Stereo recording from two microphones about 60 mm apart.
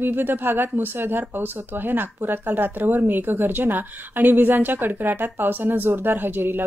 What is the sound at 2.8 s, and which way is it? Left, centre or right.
Speech, right.